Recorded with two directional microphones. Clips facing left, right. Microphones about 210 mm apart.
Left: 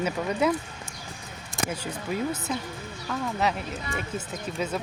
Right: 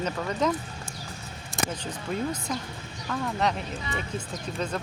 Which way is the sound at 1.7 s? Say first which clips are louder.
Left 1 dB; 5° left (ahead or behind).